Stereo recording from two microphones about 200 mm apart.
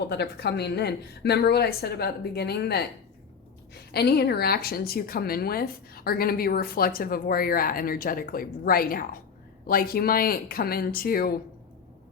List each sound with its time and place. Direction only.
0.0 s a woman's voice: 55° left (ahead or behind)
3.9 s speech: 55° left (ahead or behind)